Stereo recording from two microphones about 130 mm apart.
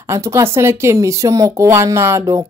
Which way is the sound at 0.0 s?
20° right (ahead or behind).